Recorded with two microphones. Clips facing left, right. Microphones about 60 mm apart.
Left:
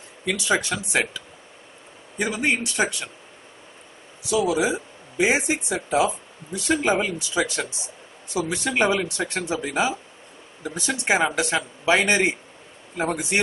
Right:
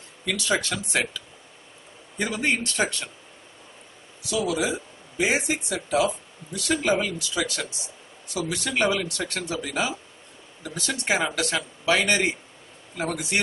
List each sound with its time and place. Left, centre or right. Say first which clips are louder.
0.2 s speech: left 2 dB; centre
4.3 s speech: left 4 dB; left